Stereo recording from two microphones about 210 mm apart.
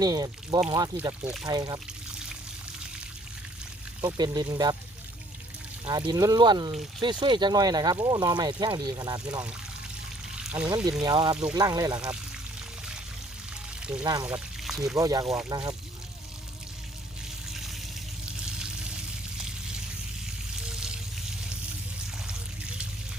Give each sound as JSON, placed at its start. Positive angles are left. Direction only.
{"t": 0.0, "sound": "speech", "side_deg": -20}
{"t": 1.5, "sound": "speech", "side_deg": -20}
{"t": 4.0, "sound": "speech", "side_deg": -20}
{"t": 5.8, "sound": "speech", "side_deg": -20}
{"t": 10.3, "sound": "pour", "side_deg": -5}
{"t": 11.0, "sound": "speech", "side_deg": -20}
{"t": 11.9, "sound": "speech", "side_deg": -5}
{"t": 14.0, "sound": "speech", "side_deg": -20}
{"t": 14.3, "sound": "speech", "side_deg": -5}
{"t": 14.9, "sound": "speech", "side_deg": -15}
{"t": 20.7, "sound": "a sound", "side_deg": -5}
{"t": 22.3, "sound": "water", "side_deg": -5}